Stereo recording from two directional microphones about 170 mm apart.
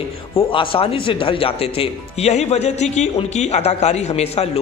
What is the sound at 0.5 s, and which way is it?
Speech, 30° left (ahead or behind).